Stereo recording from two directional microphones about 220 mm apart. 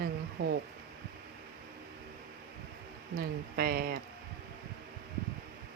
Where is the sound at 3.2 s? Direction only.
45° right (ahead or behind).